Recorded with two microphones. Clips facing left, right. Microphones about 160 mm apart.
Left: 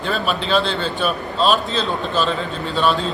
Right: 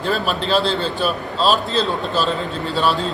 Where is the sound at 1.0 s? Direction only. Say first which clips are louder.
Even; centre (ahead or behind).